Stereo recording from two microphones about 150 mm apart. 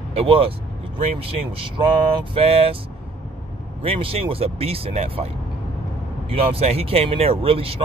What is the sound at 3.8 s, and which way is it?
Speech, 40° right (ahead or behind).